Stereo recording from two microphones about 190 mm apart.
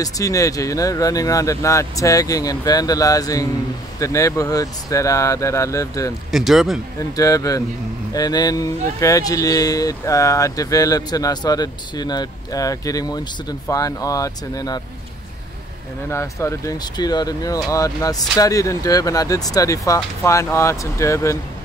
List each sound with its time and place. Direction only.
0.0 s speech: 15° left (ahead or behind)
6.3 s speech: centre (ahead or behind)
7.0 s speech: 20° left (ahead or behind)
16.1 s speech: 15° left (ahead or behind)